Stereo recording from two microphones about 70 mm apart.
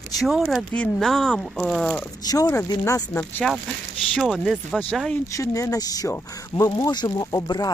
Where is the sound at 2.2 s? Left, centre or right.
Left.